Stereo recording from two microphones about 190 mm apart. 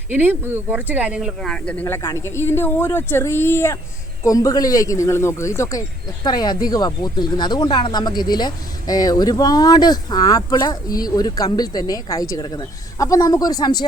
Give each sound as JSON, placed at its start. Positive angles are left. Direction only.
{"t": 0.1, "sound": "speech", "side_deg": -10}